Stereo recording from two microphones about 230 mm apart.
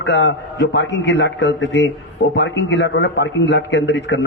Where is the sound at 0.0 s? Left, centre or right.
Left.